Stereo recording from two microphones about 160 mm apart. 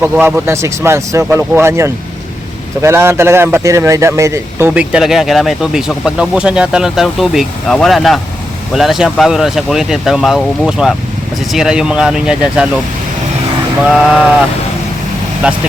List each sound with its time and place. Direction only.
0.0 s speech: 15° right (ahead or behind)
13.9 s speech: 5° right (ahead or behind)
15.4 s speech: 5° right (ahead or behind)